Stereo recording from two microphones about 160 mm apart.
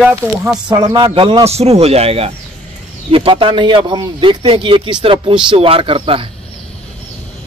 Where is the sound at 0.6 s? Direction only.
30° right (ahead or behind).